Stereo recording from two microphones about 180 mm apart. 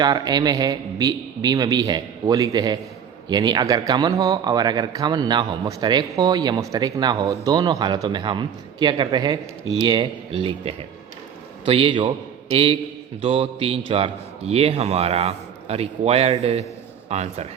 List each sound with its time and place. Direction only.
0.0 s a man's voice: 20° right (ahead or behind)